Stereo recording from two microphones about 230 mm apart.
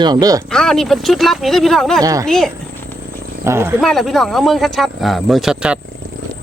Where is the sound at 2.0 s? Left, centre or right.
Centre.